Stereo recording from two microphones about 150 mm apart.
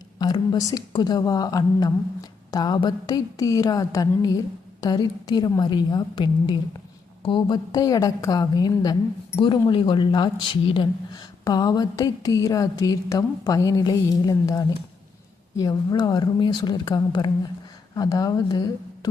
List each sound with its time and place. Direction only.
0.2 s a woman's voice: 30° left (ahead or behind)